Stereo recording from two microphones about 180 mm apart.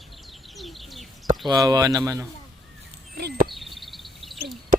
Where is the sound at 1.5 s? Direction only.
20° right (ahead or behind).